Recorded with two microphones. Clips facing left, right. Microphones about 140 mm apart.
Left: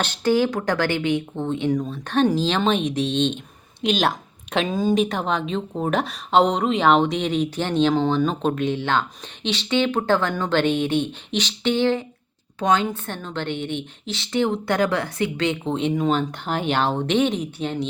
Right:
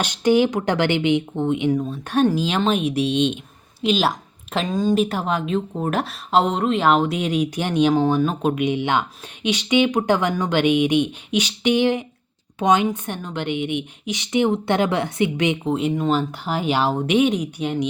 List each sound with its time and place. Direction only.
0.0 s speech: 15° right (ahead or behind)
15.7 s speech: 5° right (ahead or behind)